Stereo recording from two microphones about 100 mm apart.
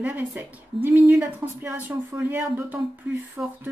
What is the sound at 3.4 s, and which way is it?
Speech, 5° right (ahead or behind).